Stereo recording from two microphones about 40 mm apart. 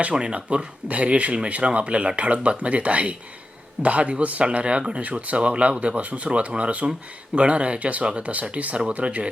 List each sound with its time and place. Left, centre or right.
0.1 s speech: right
4.4 s speech: right